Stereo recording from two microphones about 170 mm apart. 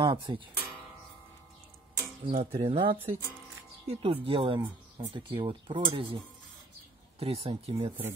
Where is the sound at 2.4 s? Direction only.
35° right (ahead or behind).